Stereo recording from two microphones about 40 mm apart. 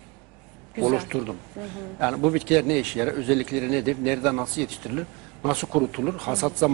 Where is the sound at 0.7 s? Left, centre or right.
Centre.